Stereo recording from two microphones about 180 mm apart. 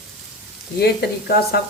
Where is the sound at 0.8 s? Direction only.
60° left (ahead or behind).